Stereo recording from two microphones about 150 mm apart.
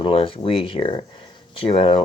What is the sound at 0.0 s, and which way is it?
Speech, 35° left (ahead or behind).